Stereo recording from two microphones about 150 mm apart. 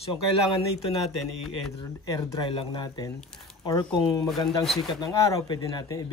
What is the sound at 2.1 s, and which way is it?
Speech, 25° left (ahead or behind).